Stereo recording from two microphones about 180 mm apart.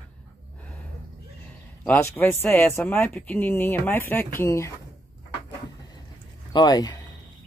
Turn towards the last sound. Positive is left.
turn(degrees=25)  # may be behind; listen again after turning